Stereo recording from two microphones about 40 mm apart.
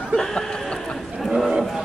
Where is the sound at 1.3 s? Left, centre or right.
Centre.